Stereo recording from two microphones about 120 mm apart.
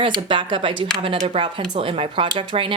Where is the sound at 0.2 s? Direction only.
45° right (ahead or behind).